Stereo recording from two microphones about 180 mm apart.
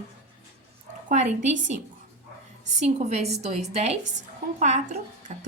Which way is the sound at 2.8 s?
35° right (ahead or behind).